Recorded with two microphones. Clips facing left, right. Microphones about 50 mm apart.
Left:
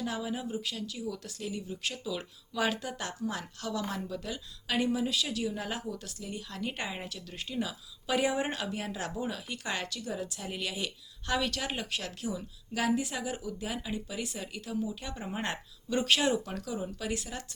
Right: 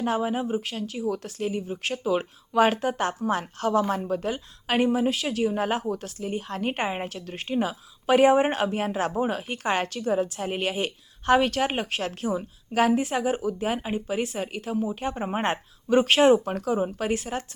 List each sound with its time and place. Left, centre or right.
0.0 s speech: right